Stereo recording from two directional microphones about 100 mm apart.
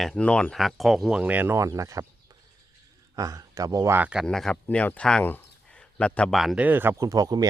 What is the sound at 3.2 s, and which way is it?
Speech, 35° right (ahead or behind).